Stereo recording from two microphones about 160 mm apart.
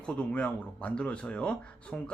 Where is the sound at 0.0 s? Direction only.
5° left (ahead or behind).